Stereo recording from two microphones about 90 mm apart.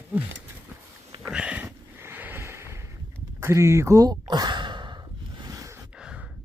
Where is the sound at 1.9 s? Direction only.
25° right (ahead or behind).